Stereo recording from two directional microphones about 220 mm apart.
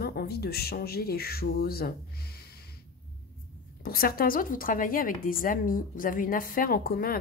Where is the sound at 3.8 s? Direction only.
40° left (ahead or behind).